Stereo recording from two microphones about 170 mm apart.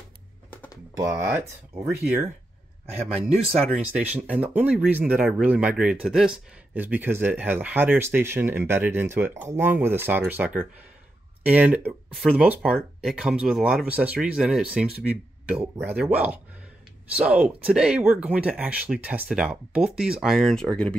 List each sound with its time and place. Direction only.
0.9 s speech: 20° right (ahead or behind)
3.8 s speech: 10° right (ahead or behind)